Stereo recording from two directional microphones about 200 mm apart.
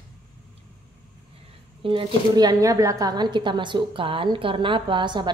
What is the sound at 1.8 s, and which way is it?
Speech, 20° right (ahead or behind).